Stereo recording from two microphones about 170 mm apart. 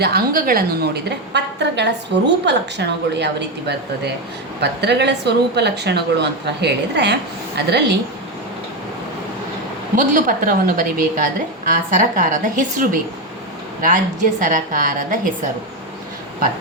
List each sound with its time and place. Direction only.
0.0 s a woman's voice: 65° right (ahead or behind)
1.3 s a woman's voice: 90° right
4.6 s a woman's voice: 85° right
9.9 s a woman's voice: 50° right (ahead or behind)